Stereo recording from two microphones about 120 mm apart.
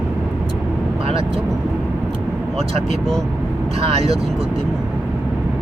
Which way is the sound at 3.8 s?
55° right (ahead or behind).